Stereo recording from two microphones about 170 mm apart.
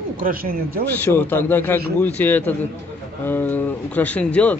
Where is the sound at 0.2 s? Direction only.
60° right (ahead or behind).